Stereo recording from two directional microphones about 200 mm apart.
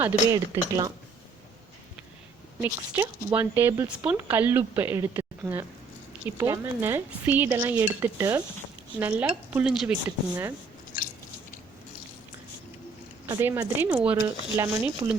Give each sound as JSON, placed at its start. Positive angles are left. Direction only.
{"t": 0.0, "sound": "speech", "side_deg": -10}
{"t": 2.6, "sound": "speech", "side_deg": -15}
{"t": 13.2, "sound": "speech", "side_deg": -15}
{"t": 14.2, "sound": "speech", "side_deg": -20}